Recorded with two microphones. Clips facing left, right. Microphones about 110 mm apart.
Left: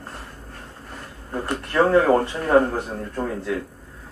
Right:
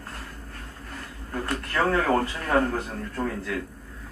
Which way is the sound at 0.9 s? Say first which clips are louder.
Left 3 dB; 20° left (ahead or behind).